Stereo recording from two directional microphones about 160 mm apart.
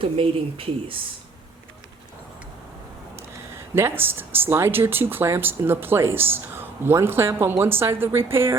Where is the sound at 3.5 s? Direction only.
15° right (ahead or behind).